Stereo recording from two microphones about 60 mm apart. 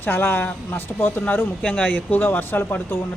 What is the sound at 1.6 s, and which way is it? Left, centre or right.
Speech, left.